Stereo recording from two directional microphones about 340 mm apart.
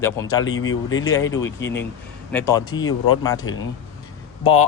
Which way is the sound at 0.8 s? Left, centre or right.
Centre.